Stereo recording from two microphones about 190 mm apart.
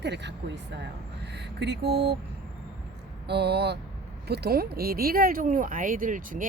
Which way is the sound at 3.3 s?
60° right (ahead or behind).